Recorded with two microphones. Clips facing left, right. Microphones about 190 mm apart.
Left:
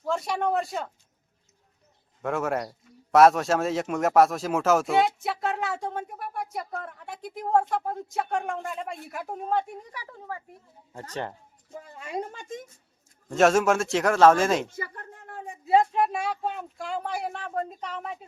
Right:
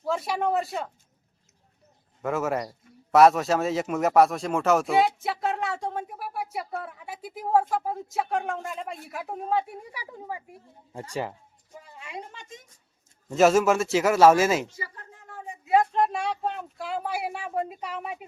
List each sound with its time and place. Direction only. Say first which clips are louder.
0.0 s speech: even; 5° right (ahead or behind)
2.2 s speech: right 1 dB; centre (ahead or behind)
11.7 s speech: left 6 dB; 45° left (ahead or behind)
13.3 s speech: right 1 dB; centre (ahead or behind)
14.7 s a sound: left 4 dB; 55° left (ahead or behind)
15.6 s speech: left 1 dB; 25° left (ahead or behind)
15.9 s speech: right 1 dB; 5° left (ahead or behind)